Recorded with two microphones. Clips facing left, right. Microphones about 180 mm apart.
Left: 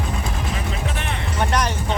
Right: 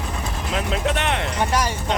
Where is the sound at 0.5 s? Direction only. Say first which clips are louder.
Right 4 dB; 70° right (ahead or behind).